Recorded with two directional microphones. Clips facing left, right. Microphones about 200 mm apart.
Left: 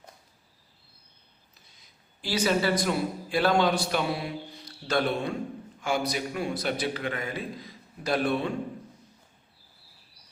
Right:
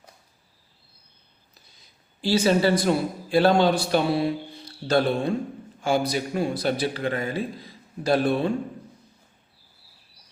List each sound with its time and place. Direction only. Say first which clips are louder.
2.2 s a man's voice: right 5 dB; 30° right (ahead or behind)